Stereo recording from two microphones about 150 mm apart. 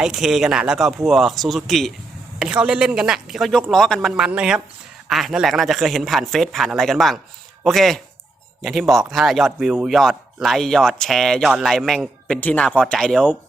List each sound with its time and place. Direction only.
0.0 s speech: 5° right (ahead or behind)